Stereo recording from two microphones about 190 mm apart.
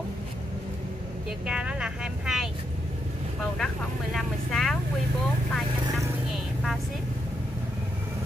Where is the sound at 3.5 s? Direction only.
Centre (ahead or behind).